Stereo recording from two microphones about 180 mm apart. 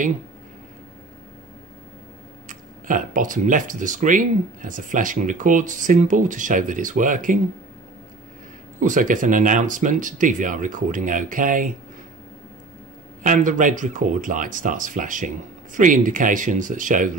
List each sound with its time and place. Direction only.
2.4 s speech: 45° right (ahead or behind)
8.7 s speech: 45° right (ahead or behind)
13.2 s speech: 45° right (ahead or behind)